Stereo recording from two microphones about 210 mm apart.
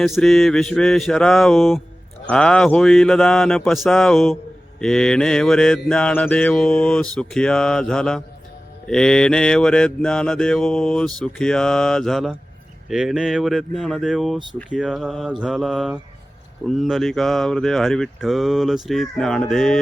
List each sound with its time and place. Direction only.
0.0 s mantra: centre (ahead or behind)